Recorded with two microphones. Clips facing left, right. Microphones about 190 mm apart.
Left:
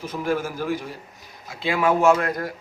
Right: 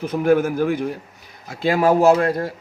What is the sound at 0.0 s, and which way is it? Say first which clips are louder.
Speech: right 8 dB; 60° right (ahead or behind).